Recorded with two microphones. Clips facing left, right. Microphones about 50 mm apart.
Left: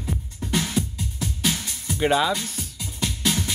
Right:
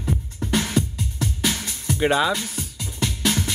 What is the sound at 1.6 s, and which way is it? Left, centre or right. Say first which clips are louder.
Music: right 2 dB; centre.